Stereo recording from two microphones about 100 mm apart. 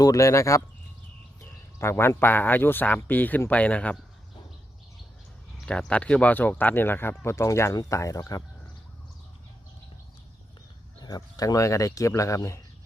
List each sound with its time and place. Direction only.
0.0 s speech: 35° left (ahead or behind)
1.8 s speech: 25° left (ahead or behind)
5.6 s speech: 10° left (ahead or behind); by 8.4 s 35° left (ahead or behind)
11.0 s speech: 40° left (ahead or behind)